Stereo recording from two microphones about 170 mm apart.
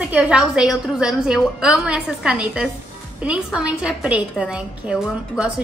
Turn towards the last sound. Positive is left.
turn(degrees=-5)  # may be behind; listen again after turning